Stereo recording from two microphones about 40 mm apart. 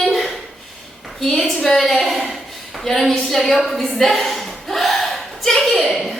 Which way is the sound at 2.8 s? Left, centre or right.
Centre.